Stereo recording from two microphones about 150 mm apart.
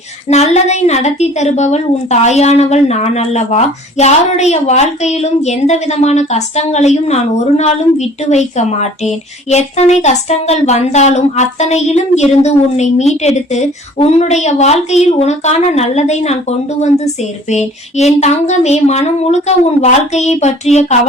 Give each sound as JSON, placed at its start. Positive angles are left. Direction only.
{"t": 0.3, "sound": "a woman's voice", "side_deg": 45}